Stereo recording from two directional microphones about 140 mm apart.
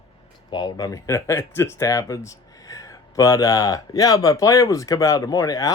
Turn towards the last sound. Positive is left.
turn(degrees=25)  # may be behind; listen again after turning